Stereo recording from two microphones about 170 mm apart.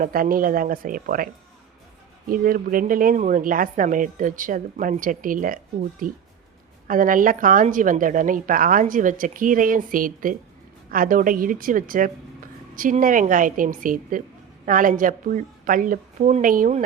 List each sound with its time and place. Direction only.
0.0 s speech: 55° right (ahead or behind)
2.3 s a woman's voice: 55° right (ahead or behind)